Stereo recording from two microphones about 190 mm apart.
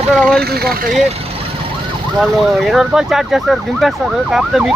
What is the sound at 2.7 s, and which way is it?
Speech, centre (ahead or behind).